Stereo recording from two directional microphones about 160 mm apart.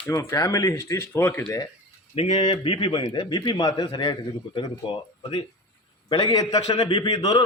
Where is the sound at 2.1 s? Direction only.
35° left (ahead or behind).